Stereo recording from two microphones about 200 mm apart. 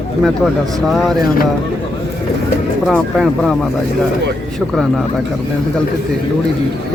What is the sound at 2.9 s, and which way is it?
Speech, centre (ahead or behind).